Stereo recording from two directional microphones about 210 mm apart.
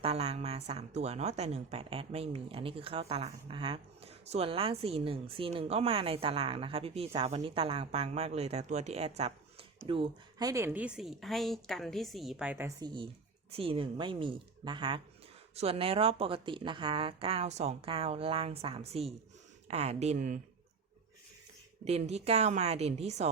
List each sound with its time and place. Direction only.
0.0 s a woman's voice: 30° right (ahead or behind)
21.8 s a woman's voice: 30° right (ahead or behind)